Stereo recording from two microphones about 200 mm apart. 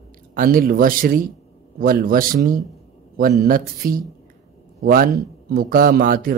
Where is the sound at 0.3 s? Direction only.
45° right (ahead or behind).